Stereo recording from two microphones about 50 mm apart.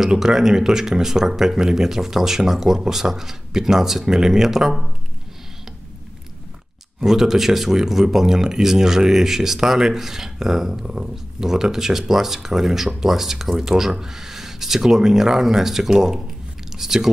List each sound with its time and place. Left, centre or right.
0.0 s speech: centre
7.0 s speech: centre